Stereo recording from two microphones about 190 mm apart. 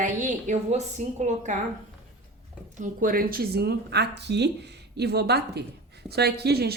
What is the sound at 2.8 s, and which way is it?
Speech, 45° right (ahead or behind).